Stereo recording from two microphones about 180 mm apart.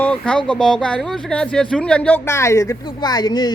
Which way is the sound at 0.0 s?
5° left (ahead or behind).